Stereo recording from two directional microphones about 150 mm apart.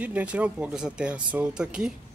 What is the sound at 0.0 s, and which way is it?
Speech, 10° right (ahead or behind).